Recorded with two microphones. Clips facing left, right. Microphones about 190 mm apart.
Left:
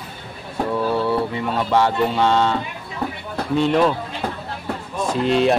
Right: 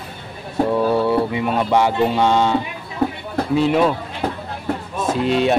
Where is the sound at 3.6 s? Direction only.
5° right (ahead or behind).